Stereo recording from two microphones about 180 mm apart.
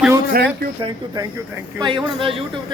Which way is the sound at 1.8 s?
25° right (ahead or behind).